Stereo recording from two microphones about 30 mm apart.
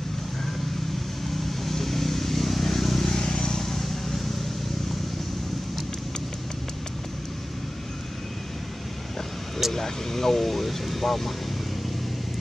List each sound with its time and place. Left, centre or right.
1.4 s vehicle: centre
3.2 s vehicle: left
3.6 s vehicle: centre
9.7 s speech: centre